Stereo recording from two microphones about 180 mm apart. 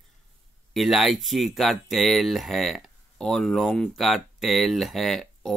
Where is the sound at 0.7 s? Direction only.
Centre (ahead or behind).